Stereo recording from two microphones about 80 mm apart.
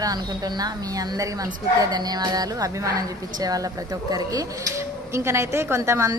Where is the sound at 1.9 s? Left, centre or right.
Right.